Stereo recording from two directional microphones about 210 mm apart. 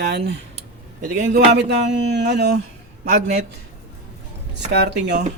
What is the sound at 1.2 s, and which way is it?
Speech, 55° right (ahead or behind).